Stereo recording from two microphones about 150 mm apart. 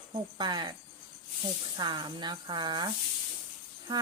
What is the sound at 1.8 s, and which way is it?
Speech, 30° right (ahead or behind).